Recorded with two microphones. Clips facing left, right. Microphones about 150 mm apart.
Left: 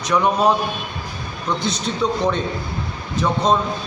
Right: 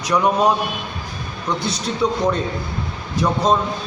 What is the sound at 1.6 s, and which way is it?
Speech, 5° right (ahead or behind).